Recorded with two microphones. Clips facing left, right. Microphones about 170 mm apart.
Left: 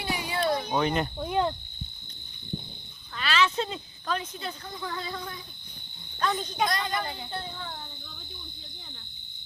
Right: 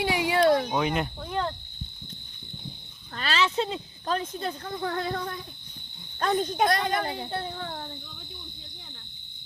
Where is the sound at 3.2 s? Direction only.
35° right (ahead or behind).